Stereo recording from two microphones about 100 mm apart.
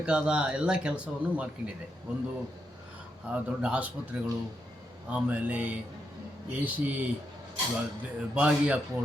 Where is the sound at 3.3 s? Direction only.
15° right (ahead or behind).